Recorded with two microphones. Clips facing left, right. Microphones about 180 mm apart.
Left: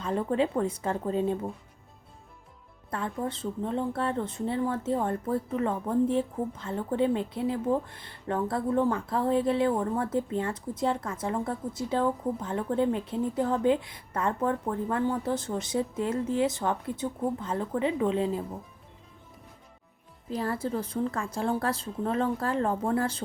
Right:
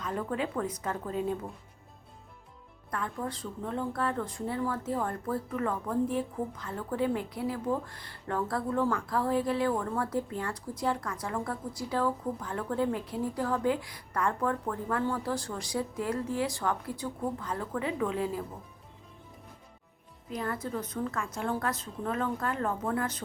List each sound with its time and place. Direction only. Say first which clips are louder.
0.0 s speech: left 6 dB; 25° left (ahead or behind)
2.9 s speech: left 3 dB; 25° left (ahead or behind)
20.3 s a woman's voice: left 4 dB; 30° left (ahead or behind)